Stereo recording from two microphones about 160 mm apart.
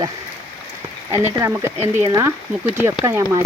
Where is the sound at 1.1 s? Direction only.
20° right (ahead or behind).